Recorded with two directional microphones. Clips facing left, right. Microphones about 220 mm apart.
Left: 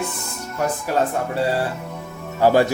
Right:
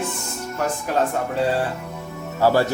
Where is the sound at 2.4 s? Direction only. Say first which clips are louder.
Left 2 dB; 15° left (ahead or behind).